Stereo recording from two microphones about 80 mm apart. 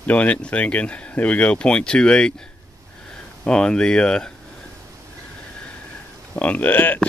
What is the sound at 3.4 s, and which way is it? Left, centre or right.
Speech, centre.